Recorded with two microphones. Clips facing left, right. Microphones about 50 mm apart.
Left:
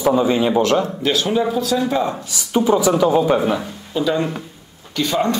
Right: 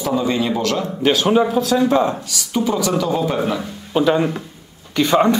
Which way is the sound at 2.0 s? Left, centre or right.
Left.